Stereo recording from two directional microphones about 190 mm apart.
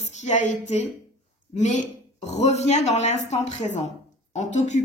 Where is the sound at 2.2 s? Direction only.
35° left (ahead or behind).